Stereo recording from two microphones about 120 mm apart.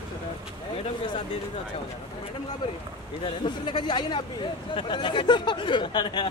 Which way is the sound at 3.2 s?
45° left (ahead or behind).